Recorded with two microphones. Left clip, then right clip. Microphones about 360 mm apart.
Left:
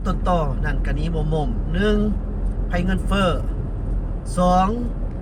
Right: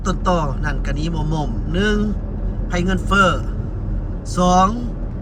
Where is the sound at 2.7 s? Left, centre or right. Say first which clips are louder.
Right 7 dB; centre.